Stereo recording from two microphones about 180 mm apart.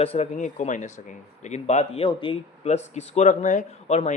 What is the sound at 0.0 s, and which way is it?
A man's voice, 35° left (ahead or behind).